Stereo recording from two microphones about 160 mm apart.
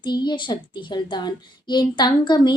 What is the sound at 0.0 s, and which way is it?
A child's voice, 25° left (ahead or behind).